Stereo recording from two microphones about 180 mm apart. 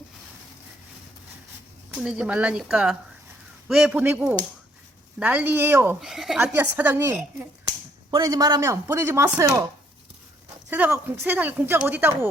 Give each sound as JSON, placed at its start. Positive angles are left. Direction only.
{"t": 2.0, "sound": "speech", "side_deg": -5}
{"t": 8.1, "sound": "speech", "side_deg": -20}
{"t": 10.7, "sound": "speech", "side_deg": -10}